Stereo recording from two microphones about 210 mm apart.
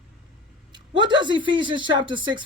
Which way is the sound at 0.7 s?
20° right (ahead or behind).